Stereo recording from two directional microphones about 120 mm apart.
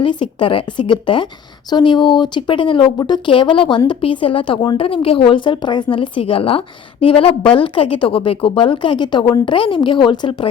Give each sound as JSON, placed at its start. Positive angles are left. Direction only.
{"t": 0.0, "sound": "speech", "side_deg": 45}